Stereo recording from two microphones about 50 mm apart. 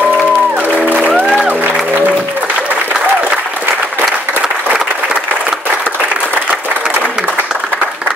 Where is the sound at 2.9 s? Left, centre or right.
Right.